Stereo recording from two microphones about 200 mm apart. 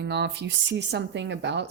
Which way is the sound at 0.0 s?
55° right (ahead or behind).